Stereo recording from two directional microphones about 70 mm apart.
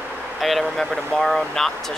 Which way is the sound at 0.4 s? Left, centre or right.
Centre.